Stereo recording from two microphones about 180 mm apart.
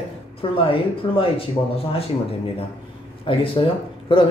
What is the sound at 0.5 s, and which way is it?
Speech, 30° left (ahead or behind).